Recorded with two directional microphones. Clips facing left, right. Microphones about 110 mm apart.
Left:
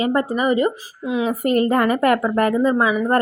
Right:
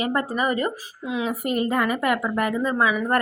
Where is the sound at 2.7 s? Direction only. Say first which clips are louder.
Left 4 dB; 25° left (ahead or behind).